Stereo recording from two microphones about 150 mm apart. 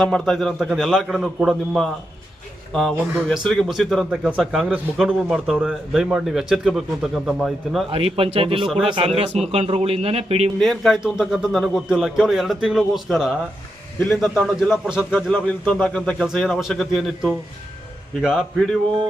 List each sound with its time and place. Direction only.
0.0 s speech: 5° left (ahead or behind)
7.9 s a man's voice: 40° right (ahead or behind)
8.6 s speech: 5° right (ahead or behind)
9.0 s a man's voice: 40° right (ahead or behind)
10.6 s speech: centre (ahead or behind)
15.3 s a man's voice: 5° left (ahead or behind)